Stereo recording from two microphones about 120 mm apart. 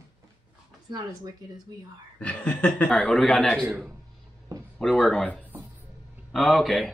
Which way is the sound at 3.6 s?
10° right (ahead or behind).